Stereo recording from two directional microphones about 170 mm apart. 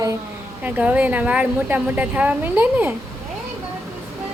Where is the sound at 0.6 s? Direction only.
10° right (ahead or behind).